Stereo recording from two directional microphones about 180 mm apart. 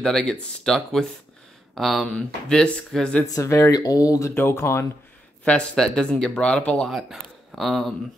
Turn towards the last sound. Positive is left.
turn(degrees=0)  # may be behind; listen again after turning